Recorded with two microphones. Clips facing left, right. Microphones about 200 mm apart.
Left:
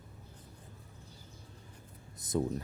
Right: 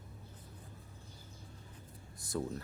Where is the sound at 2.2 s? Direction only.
20° left (ahead or behind).